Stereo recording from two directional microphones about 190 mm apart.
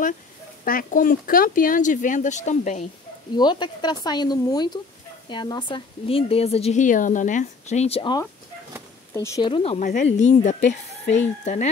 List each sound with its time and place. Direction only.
0.7 s speech: 45° left (ahead or behind)
3.3 s a woman's voice: 25° left (ahead or behind)